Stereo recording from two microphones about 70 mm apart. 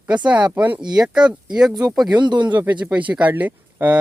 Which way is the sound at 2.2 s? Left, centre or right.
Right.